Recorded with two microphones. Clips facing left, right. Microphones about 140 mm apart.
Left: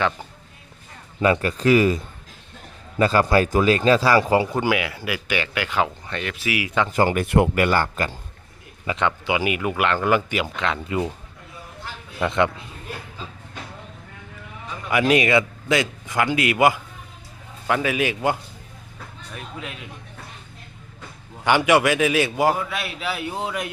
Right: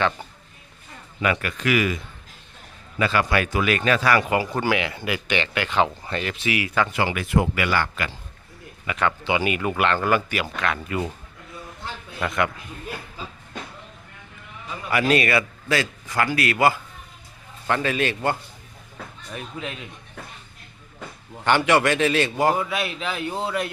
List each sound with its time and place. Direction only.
1.2 s speech: 30° left (ahead or behind)
3.0 s speech: 35° left (ahead or behind)
4.5 s speech: 10° left (ahead or behind)
6.9 s speech: 45° left (ahead or behind)
7.3 s speech: 60° left (ahead or behind); by 8.1 s 40° left (ahead or behind)
8.9 s speech: 20° left (ahead or behind)
12.3 s a man's voice: 25° left (ahead or behind)
14.8 s speech: 15° left (ahead or behind)
19.3 s speech: centre (ahead or behind)
21.4 s speech: 10° left (ahead or behind)